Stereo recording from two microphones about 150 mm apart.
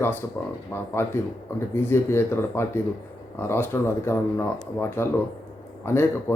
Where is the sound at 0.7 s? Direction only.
15° left (ahead or behind).